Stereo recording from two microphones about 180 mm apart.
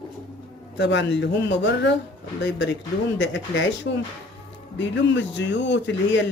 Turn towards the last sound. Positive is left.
turn(degrees=90)